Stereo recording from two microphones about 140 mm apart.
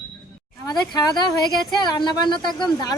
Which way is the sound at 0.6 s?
30° left (ahead or behind).